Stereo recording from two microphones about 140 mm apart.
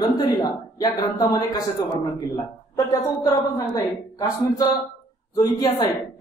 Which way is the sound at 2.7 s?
25° left (ahead or behind).